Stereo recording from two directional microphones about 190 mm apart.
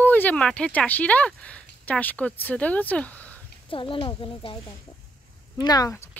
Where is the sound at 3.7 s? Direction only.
25° left (ahead or behind).